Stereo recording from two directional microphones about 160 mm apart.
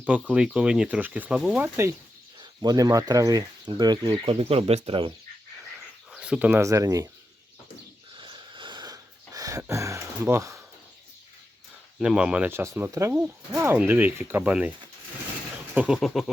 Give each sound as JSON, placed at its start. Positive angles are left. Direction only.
{"t": 0.0, "sound": "speech", "side_deg": -10}
{"t": 2.4, "sound": "speech", "side_deg": -25}
{"t": 6.1, "sound": "speech", "side_deg": -5}
{"t": 8.1, "sound": "a sound", "side_deg": -30}
{"t": 11.9, "sound": "speech", "side_deg": -5}
{"t": 15.7, "sound": "goat", "side_deg": -5}